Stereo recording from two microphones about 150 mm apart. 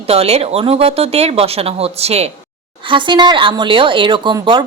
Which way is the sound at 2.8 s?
35° right (ahead or behind).